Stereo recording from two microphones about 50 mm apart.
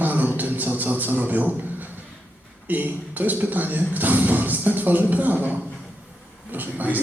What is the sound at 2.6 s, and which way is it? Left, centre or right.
Speech, right.